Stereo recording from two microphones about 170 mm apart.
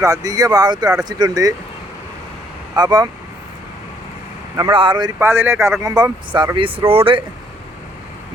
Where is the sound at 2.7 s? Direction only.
25° right (ahead or behind).